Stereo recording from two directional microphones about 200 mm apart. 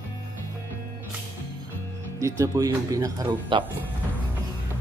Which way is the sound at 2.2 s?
15° right (ahead or behind).